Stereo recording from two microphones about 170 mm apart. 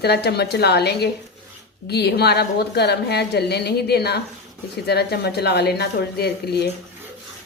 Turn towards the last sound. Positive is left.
turn(degrees=75)  # may be behind; listen again after turning